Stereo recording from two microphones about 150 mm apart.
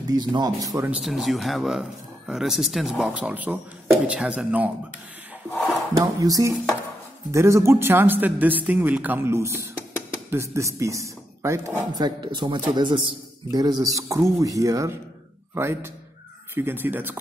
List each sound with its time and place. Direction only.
0.0 s speech: 25° right (ahead or behind)
0.8 s speech: 5° right (ahead or behind)
5.9 s speech: 25° right (ahead or behind)